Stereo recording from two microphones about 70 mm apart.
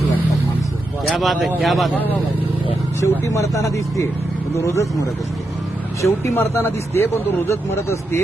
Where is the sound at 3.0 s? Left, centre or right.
Left.